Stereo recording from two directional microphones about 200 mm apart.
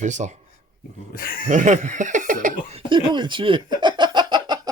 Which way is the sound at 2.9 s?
25° right (ahead or behind).